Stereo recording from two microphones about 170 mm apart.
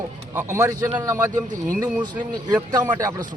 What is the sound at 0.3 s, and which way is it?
A man's voice, 15° right (ahead or behind).